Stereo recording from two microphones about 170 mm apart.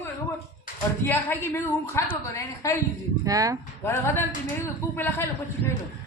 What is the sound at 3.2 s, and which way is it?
Speech, 20° right (ahead or behind).